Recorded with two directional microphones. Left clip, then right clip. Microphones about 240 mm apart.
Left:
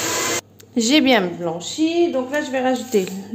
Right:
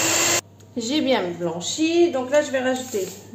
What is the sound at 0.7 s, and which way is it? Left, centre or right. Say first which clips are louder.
A woman's voice: left 6 dB; left.